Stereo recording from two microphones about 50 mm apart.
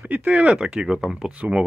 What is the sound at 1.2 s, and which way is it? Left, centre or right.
Speech, right.